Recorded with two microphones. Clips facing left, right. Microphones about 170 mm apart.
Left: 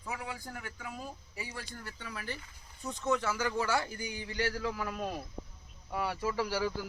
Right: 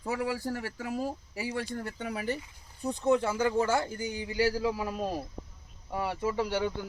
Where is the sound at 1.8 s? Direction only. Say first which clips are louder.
Right 9 dB; 45° right (ahead or behind).